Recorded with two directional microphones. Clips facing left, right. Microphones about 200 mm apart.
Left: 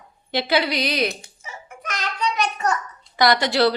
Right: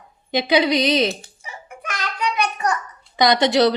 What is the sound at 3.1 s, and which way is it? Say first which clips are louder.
Speech: right 3 dB; 20° right (ahead or behind).